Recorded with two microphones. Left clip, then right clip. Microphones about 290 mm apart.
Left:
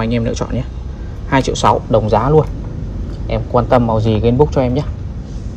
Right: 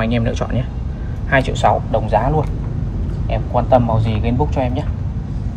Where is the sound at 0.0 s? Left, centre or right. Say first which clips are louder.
Left 1 dB; centre.